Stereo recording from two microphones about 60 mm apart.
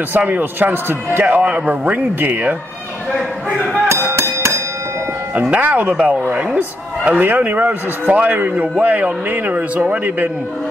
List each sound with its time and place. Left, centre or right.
0.3 s a man's voice: right
4.1 s music: right
5.3 s a man's voice: right